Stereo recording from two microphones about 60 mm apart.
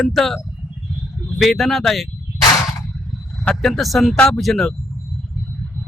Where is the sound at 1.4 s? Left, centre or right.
Centre.